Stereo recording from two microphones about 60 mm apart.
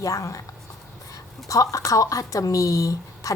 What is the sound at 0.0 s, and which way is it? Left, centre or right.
Speech, left.